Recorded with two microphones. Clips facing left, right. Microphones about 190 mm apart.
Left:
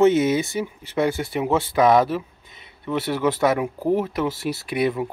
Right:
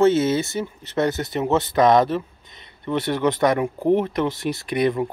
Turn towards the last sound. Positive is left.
turn(degrees=5)  # may be behind; listen again after turning